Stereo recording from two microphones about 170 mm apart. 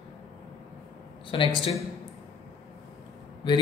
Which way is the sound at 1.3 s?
30° left (ahead or behind).